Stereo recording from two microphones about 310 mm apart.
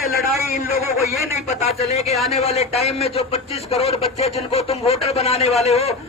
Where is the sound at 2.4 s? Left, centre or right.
Centre.